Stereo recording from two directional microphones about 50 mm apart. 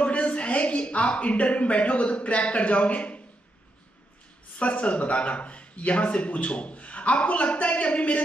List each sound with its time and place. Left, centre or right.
0.0 s speech: left
4.6 s speech: left